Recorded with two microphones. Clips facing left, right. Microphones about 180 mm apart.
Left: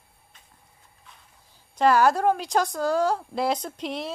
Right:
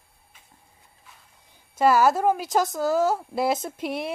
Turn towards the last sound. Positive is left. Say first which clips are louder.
# right 2 dB
turn(degrees=-10)  # may be behind; listen again after turning